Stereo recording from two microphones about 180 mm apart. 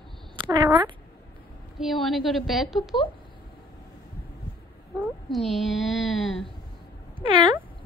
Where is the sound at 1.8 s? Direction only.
Centre (ahead or behind).